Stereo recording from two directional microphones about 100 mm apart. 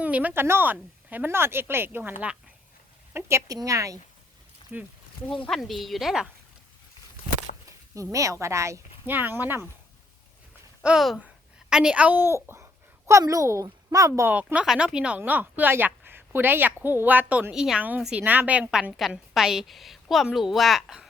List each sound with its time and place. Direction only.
0.0 s a woman's voice: 15° right (ahead or behind); by 4.0 s 35° right (ahead or behind)
4.7 s speech: 20° right (ahead or behind)
5.5 s a woman's voice: centre (ahead or behind)
7.9 s a woman's voice: 35° right (ahead or behind)
9.1 s speech: 20° right (ahead or behind)
10.8 s a woman's voice: centre (ahead or behind); by 14.3 s 35° right (ahead or behind)
14.3 s a woman's voice: 15° right (ahead or behind)